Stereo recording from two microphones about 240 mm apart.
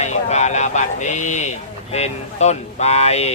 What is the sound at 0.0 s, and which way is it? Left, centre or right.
Speech, left.